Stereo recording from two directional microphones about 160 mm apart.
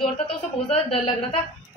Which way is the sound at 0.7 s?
35° left (ahead or behind).